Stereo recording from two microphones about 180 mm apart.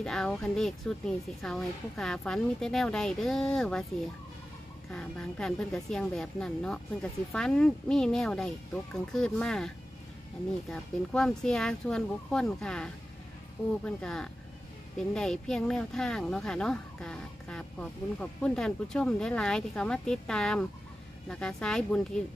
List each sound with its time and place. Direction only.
0.0 s speech: 5° left (ahead or behind)
4.9 s speech: 5° left (ahead or behind)
10.7 s speech: 5° left (ahead or behind)